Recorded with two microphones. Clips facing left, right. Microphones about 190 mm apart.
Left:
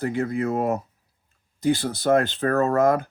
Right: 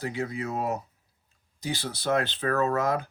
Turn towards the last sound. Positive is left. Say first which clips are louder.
# left 6 dB
turn(degrees=50)  # may be behind; listen again after turning